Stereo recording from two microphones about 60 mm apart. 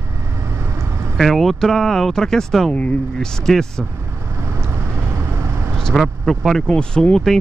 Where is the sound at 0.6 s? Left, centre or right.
Right.